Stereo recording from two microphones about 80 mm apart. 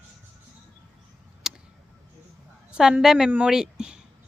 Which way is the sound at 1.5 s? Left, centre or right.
Centre.